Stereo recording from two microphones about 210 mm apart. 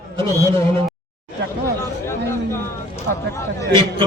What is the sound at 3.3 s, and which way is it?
Speech, 15° left (ahead or behind).